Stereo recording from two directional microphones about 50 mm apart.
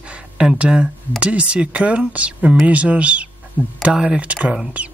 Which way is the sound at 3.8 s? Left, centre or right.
Centre.